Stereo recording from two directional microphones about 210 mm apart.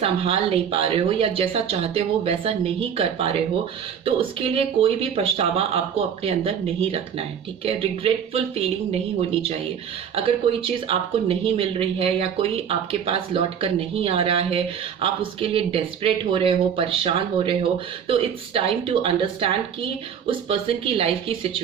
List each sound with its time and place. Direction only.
0.0 s speech: 30° right (ahead or behind)